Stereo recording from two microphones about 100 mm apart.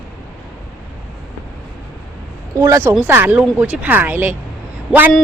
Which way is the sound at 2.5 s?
30° right (ahead or behind).